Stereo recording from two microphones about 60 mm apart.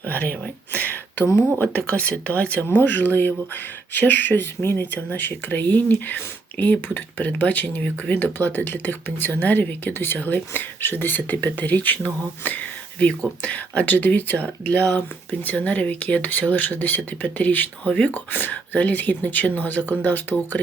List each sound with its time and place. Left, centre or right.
0.0 s a sound: left
1.6 s speech: left
5.0 s speech: left